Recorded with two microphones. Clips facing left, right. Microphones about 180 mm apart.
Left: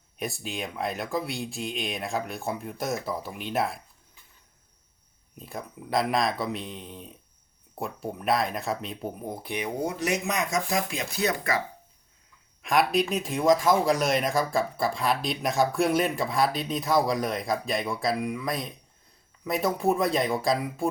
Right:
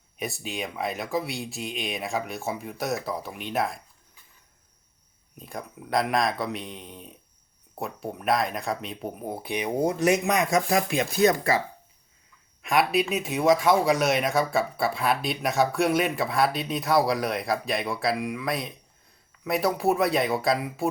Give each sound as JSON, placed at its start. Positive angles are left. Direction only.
{"t": 0.2, "sound": "speech", "side_deg": 0}
{"t": 5.4, "sound": "speech", "side_deg": 0}
{"t": 9.8, "sound": "speech", "side_deg": -50}
{"t": 12.6, "sound": "speech", "side_deg": -5}